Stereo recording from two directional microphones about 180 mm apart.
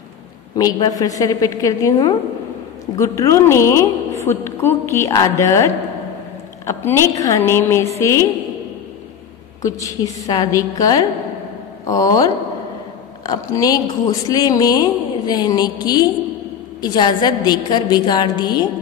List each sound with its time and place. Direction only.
0.6 s speech: 20° left (ahead or behind)
3.0 s a woman's voice: 15° left (ahead or behind)
9.6 s speech: 15° left (ahead or behind)